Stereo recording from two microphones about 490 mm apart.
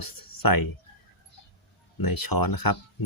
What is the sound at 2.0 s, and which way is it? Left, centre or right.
Speech, left.